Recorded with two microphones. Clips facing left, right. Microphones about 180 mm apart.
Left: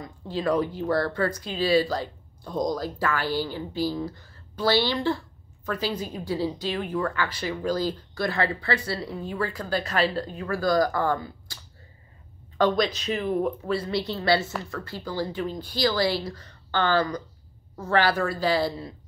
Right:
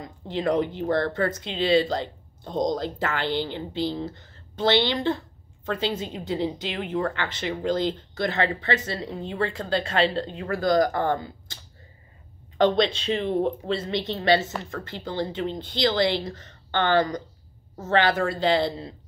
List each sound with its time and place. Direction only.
0.0 s speech: 25° right (ahead or behind)